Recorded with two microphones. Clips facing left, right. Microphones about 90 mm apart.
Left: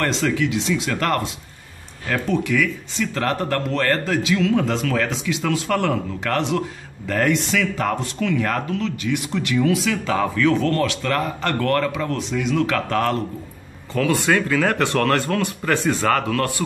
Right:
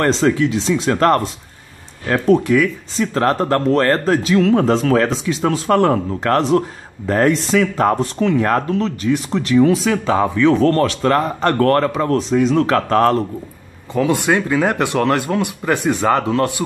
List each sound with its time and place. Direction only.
0.0 s speech: 35° right (ahead or behind)
10.5 s speech: 40° right (ahead or behind)
13.9 s speech: 20° right (ahead or behind)